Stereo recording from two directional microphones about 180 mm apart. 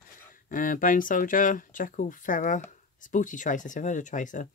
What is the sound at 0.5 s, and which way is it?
Speech, 50° left (ahead or behind).